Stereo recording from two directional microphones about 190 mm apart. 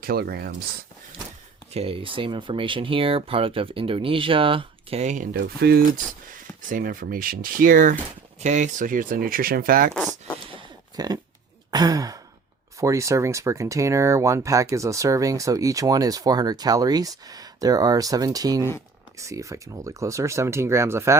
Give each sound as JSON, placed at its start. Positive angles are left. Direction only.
{"t": 0.0, "sound": "speech", "side_deg": -55}
{"t": 1.7, "sound": "speech", "side_deg": -30}
{"t": 5.4, "sound": "speech", "side_deg": -55}
{"t": 9.9, "sound": "speech", "side_deg": 5}
{"t": 10.5, "sound": "a sound", "side_deg": -25}
{"t": 11.7, "sound": "sigh", "side_deg": -20}
{"t": 12.8, "sound": "speech", "side_deg": -15}